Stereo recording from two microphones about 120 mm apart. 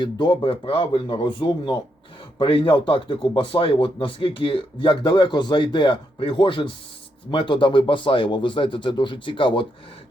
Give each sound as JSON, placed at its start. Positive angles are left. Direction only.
{"t": 0.0, "sound": "speech", "side_deg": 40}